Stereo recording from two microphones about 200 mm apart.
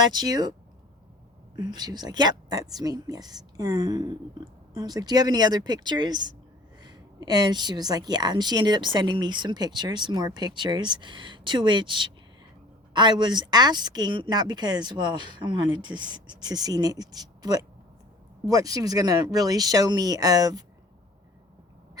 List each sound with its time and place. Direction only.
0.1 s a woman's voice: 20° right (ahead or behind)
1.5 s a woman's voice: 20° right (ahead or behind)